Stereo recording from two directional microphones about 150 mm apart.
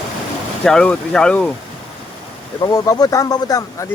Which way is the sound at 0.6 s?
5° left (ahead or behind).